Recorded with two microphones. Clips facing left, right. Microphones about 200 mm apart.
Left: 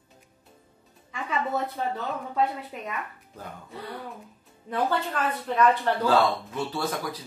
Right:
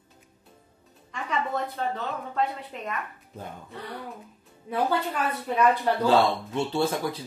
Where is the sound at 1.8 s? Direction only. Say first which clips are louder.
Even; 10° left (ahead or behind).